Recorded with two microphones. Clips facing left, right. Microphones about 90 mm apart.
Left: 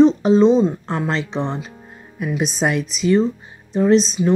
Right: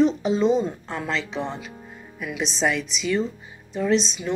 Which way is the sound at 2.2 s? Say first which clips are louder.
Left 4 dB; 50° left (ahead or behind).